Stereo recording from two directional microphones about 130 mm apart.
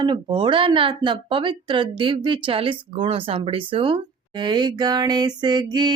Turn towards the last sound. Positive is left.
turn(degrees=-35)  # may be behind; listen again after turning